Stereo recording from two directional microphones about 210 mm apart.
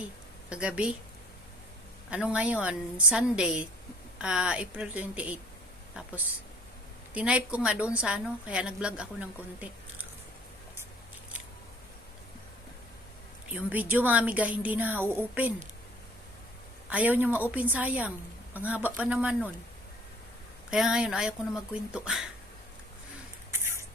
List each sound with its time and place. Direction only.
0.5 s a woman's voice: 5° right (ahead or behind)
2.0 s a woman's voice: 5° right (ahead or behind)
7.1 s a woman's voice: 5° right (ahead or behind)
13.5 s a woman's voice: 10° right (ahead or behind)
16.9 s a woman's voice: 10° right (ahead or behind)
20.7 s a woman's voice: 5° right (ahead or behind)